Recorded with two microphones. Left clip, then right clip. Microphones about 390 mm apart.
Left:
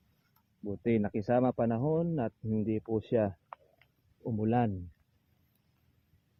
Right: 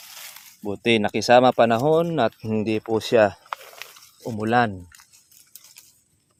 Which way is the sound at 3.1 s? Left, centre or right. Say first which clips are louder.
Right 15 dB; centre.